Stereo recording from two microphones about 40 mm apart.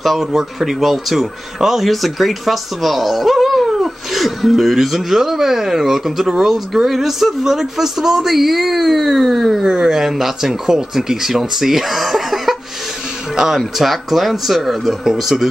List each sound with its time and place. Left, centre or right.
0.0 s speech: centre
9.6 s speech: centre
13.7 s speech: centre